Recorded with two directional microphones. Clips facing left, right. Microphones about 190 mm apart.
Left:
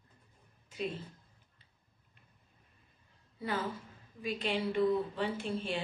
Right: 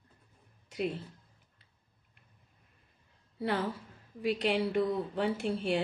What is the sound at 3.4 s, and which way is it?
A woman's voice, 65° right (ahead or behind).